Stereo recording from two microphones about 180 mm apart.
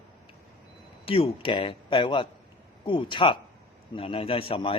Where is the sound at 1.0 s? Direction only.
30° left (ahead or behind).